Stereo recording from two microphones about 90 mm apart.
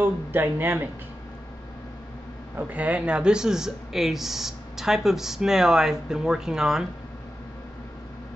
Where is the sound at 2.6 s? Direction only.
15° right (ahead or behind).